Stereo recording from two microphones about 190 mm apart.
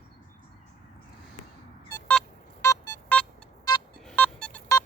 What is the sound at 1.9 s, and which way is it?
Telephone dialing, 10° left (ahead or behind).